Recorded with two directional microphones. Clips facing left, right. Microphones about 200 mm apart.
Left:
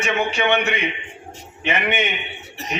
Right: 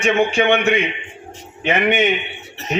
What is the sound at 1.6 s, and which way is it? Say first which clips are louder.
Speech: right 5 dB; 50° right (ahead or behind).